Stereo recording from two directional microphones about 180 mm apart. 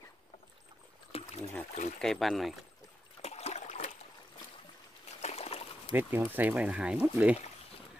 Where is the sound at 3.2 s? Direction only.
35° left (ahead or behind).